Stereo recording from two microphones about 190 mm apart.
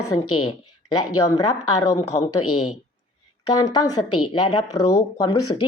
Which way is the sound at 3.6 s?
20° left (ahead or behind).